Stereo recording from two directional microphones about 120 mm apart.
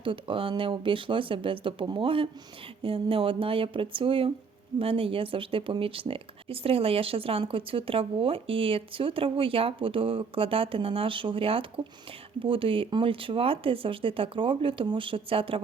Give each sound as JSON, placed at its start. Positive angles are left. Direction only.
{"t": 0.0, "sound": "speech", "side_deg": -45}